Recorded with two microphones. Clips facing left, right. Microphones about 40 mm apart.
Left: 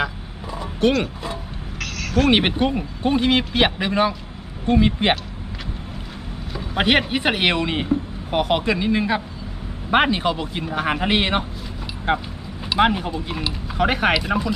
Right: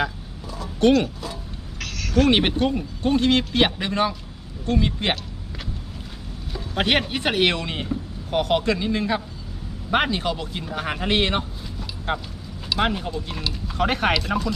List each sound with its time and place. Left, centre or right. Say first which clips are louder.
0.8 s speech: right 2 dB; centre
4.6 s speech: left 5 dB; left
6.5 s speech: left 3 dB; centre